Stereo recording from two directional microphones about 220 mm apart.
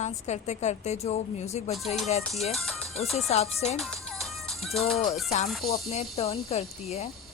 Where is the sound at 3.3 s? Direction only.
30° left (ahead or behind).